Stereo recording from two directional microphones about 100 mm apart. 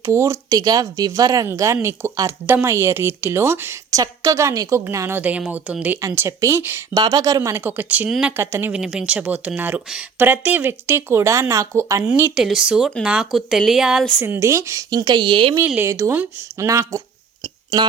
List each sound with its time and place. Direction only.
0.0 s speech: 25° right (ahead or behind)
6.9 s speech: 40° right (ahead or behind)
7.6 s speech: 15° right (ahead or behind)
8.4 s speech: 25° right (ahead or behind)
8.7 s speech: 10° right (ahead or behind); by 12.0 s 30° right (ahead or behind)
12.3 s speech: 5° right (ahead or behind)
14.3 s speech: 30° right (ahead or behind)
14.8 s speech: 45° right (ahead or behind)
15.6 s speech: 20° right (ahead or behind)